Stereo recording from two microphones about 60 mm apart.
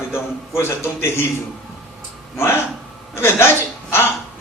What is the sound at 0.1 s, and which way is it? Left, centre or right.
A man's voice, left.